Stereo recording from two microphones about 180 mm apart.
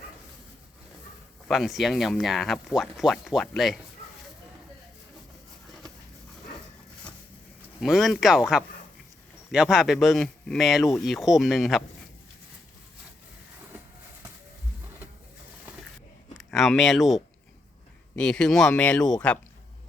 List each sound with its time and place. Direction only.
1.5 s speech: centre (ahead or behind)
7.8 s speech: centre (ahead or behind)
16.3 s speech: centre (ahead or behind)